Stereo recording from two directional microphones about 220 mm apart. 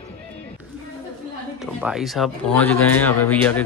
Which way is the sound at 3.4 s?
5° left (ahead or behind).